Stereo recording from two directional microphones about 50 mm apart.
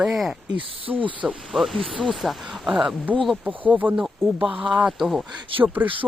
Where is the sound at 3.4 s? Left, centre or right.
Right.